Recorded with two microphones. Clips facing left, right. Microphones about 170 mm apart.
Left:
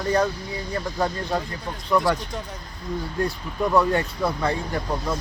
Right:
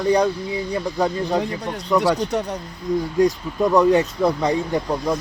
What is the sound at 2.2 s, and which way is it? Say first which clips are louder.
Speech: right 10 dB; 75° right (ahead or behind).